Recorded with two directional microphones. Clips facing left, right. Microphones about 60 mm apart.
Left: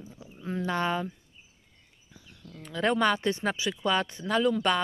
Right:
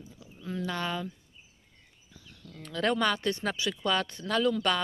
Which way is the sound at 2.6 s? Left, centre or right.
Centre.